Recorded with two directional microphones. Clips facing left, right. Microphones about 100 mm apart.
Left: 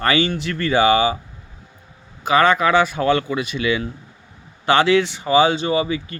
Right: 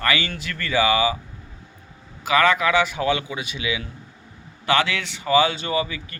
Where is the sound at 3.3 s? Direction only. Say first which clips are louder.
Left 7 dB; 55° left (ahead or behind).